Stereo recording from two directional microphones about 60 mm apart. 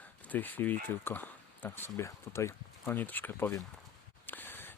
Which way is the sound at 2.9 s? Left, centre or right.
Left.